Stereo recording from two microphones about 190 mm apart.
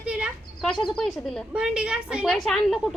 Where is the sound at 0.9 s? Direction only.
Centre (ahead or behind).